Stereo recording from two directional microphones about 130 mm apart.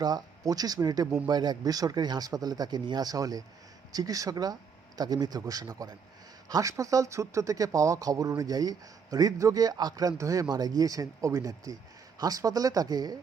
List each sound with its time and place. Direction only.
0.0 s speech: 30° right (ahead or behind)